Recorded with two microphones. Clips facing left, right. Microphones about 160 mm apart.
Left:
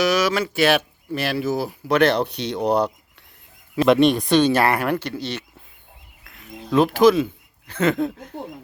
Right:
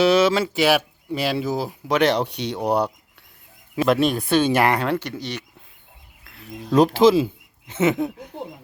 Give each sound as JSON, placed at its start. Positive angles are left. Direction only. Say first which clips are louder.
{"t": 0.0, "sound": "speech", "louder": "right 3 dB", "side_deg": -25}
{"t": 6.3, "sound": "speech", "louder": "right 1 dB", "side_deg": -35}